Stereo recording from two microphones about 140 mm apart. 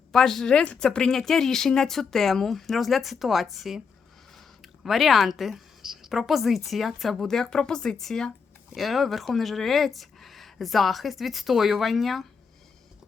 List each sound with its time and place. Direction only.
0.1 s speech: centre (ahead or behind)
4.4 s a sound: centre (ahead or behind)
6.7 s speech: centre (ahead or behind)